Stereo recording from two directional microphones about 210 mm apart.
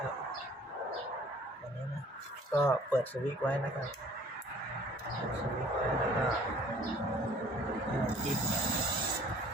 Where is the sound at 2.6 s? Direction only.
10° left (ahead or behind).